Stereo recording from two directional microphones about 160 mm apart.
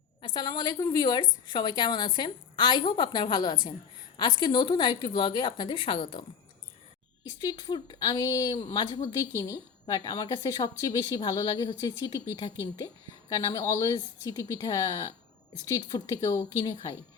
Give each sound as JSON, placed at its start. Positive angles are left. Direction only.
{"t": 0.2, "sound": "a woman's voice", "side_deg": 30}
{"t": 7.7, "sound": "a woman's voice", "side_deg": 25}
{"t": 13.3, "sound": "a woman's voice", "side_deg": 20}